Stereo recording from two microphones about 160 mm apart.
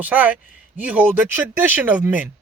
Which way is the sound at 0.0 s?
10° right (ahead or behind).